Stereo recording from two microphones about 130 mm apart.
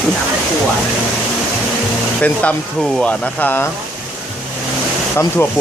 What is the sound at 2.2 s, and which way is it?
Speech, 10° left (ahead or behind).